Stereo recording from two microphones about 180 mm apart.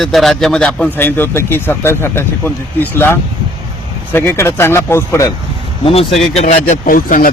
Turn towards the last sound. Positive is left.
turn(degrees=50)  # may be behind; listen again after turning